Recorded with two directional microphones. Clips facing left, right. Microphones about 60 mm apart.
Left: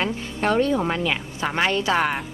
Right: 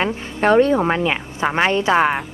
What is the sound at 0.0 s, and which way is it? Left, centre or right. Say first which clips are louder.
Speech: right 5 dB; right.